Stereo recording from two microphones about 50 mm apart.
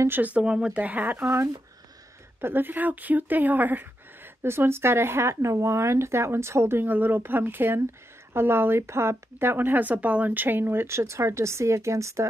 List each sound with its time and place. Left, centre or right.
0.1 s speech: right
0.4 s speech: centre
0.7 s speech: right
1.2 s speech: right
2.4 s speech: right
4.4 s speech: right
6.9 s speech: right
9.6 s speech: right